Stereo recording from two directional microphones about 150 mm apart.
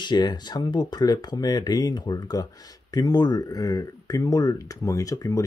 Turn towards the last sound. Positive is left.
turn(degrees=20)  # may be behind; listen again after turning